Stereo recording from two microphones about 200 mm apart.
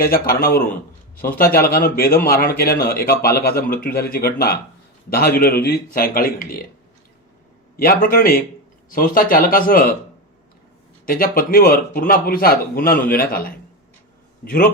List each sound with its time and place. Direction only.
0.0 s a man's voice: 50° left (ahead or behind)
7.8 s a man's voice: 45° left (ahead or behind)
11.0 s a man's voice: 45° left (ahead or behind)